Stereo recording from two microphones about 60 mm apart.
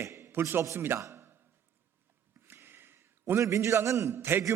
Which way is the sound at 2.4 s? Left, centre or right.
Right.